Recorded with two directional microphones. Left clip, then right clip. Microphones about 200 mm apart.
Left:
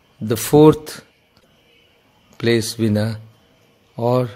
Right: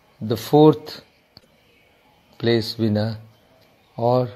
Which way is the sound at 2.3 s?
15° left (ahead or behind).